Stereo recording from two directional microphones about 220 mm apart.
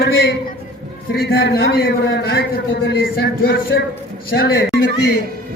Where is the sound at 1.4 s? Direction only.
50° left (ahead or behind).